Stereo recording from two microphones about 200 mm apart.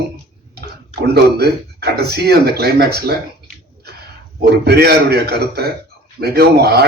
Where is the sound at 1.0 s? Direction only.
55° right (ahead or behind).